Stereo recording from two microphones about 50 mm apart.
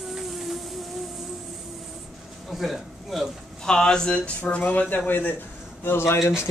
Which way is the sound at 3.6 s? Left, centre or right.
Centre.